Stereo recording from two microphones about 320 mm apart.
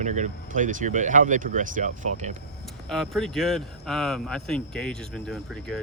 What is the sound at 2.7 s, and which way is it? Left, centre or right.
Speech, centre.